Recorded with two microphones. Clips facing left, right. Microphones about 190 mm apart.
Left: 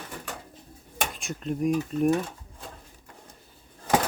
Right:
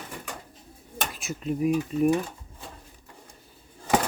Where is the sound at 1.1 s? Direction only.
5° right (ahead or behind).